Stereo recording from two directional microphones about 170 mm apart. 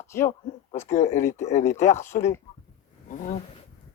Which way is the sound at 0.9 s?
45° left (ahead or behind).